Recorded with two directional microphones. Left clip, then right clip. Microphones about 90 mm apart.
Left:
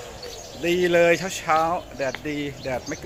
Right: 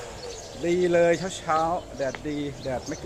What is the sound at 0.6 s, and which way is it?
Speech, 15° left (ahead or behind).